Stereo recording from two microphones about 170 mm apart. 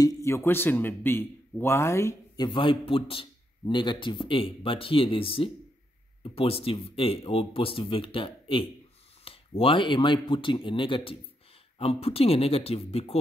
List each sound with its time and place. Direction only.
0.0 s a man's voice: 20° left (ahead or behind); by 13.2 s 35° left (ahead or behind)